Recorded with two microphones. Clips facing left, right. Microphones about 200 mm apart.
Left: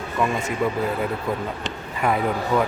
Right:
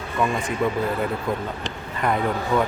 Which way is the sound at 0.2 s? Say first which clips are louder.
Even; centre (ahead or behind).